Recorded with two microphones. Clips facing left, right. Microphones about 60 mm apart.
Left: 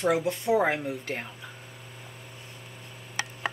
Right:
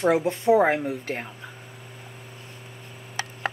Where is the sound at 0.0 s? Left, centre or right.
Right.